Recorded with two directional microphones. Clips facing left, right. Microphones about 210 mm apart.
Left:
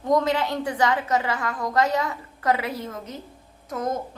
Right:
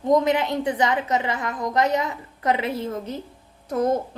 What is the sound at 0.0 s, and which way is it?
A woman's voice, 20° right (ahead or behind).